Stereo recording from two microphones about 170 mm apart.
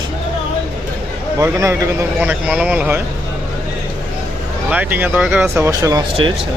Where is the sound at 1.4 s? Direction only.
15° right (ahead or behind).